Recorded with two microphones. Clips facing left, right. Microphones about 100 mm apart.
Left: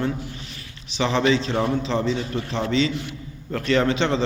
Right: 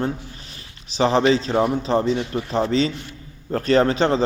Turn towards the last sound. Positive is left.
turn(degrees=-40)  # may be behind; listen again after turning